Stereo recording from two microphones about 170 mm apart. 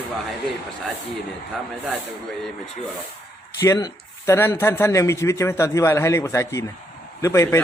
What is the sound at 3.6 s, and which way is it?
Speech, 20° left (ahead or behind).